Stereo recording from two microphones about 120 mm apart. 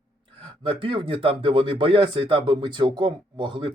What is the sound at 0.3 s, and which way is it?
Speech, 50° right (ahead or behind).